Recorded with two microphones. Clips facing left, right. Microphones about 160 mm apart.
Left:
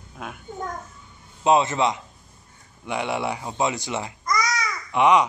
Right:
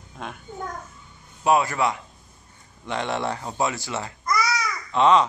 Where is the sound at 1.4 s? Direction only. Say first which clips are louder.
Left 1 dB; 20° left (ahead or behind).